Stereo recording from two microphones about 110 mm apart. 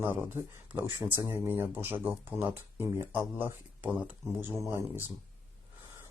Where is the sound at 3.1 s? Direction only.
15° right (ahead or behind).